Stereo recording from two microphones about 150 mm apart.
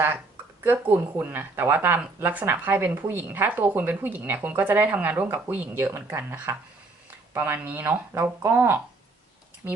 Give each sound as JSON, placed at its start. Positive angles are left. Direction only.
{"t": 0.6, "sound": "speech", "side_deg": -15}